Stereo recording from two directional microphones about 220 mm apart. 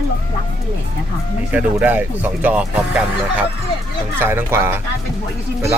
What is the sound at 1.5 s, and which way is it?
Speech, 5° right (ahead or behind).